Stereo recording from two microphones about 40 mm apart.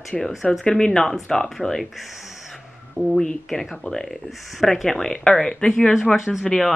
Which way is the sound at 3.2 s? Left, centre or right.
Centre.